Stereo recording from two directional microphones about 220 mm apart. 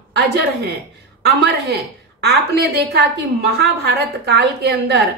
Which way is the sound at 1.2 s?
50° right (ahead or behind).